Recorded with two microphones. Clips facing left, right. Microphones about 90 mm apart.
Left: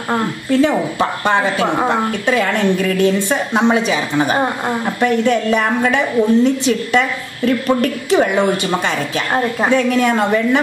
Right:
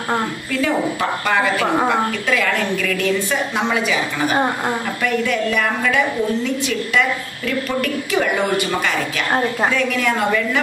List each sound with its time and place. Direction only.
0.5 s a woman's voice: 25° left (ahead or behind)
5.0 s a woman's voice: 30° left (ahead or behind)
9.7 s a woman's voice: 30° left (ahead or behind)